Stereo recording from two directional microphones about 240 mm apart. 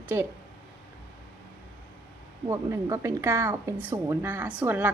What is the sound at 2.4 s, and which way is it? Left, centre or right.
A woman's voice, centre.